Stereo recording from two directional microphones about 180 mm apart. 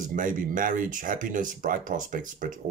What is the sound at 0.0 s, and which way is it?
Speech, 45° right (ahead or behind).